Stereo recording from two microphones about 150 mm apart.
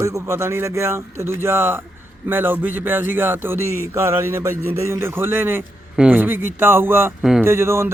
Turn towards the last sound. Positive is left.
turn(degrees=-15)  # may be behind; listen again after turning